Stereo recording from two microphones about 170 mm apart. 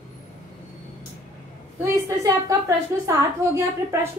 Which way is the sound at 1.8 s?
20° right (ahead or behind).